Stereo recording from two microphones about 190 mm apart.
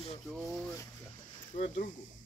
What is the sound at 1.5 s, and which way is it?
Speech, 40° left (ahead or behind).